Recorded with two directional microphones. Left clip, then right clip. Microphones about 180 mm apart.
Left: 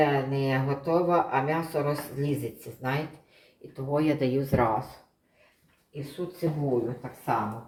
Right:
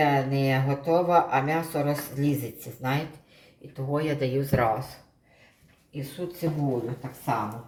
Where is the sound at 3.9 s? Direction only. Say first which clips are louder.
Left 1 dB; 20° left (ahead or behind).